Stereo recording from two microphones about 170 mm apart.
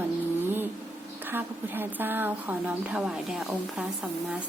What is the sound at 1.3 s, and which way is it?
A woman's voice, 10° right (ahead or behind).